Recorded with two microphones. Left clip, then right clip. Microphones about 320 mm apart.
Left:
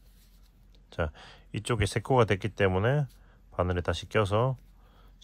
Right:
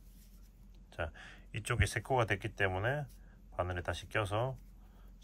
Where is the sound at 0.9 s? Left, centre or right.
Centre.